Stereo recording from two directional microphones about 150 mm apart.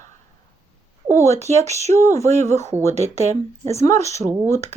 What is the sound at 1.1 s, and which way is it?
Speech, 20° left (ahead or behind).